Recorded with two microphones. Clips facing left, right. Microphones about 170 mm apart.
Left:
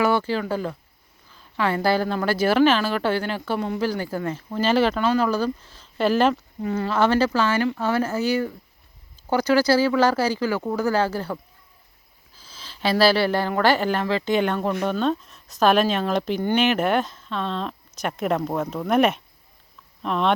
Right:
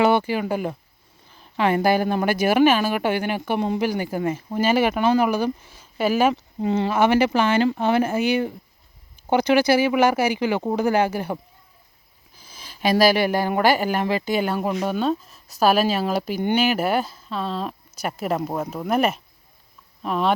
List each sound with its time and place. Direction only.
0.0 s speech: 20° right (ahead or behind)
6.3 s speech: 25° right (ahead or behind); by 20.3 s 5° right (ahead or behind)